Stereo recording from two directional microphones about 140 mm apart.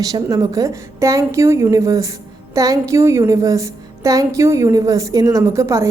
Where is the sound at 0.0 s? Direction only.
25° right (ahead or behind).